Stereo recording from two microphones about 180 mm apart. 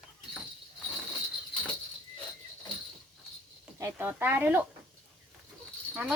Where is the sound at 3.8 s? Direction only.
10° right (ahead or behind).